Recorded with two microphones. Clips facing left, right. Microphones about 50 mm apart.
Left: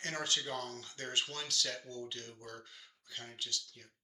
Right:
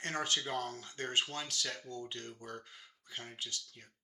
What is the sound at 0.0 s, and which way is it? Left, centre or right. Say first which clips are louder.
Speech: right 2 dB; right.